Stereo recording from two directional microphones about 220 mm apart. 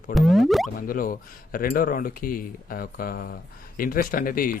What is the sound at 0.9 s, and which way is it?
Speech, 40° left (ahead or behind).